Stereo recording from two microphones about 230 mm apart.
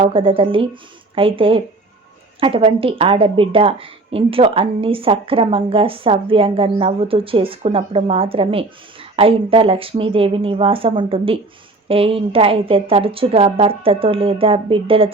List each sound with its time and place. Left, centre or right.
0.0 s a woman's voice: right